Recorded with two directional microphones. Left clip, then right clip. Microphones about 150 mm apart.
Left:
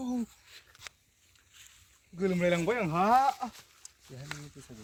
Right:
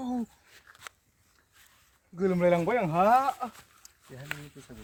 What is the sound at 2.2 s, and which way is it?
Speech, 85° right.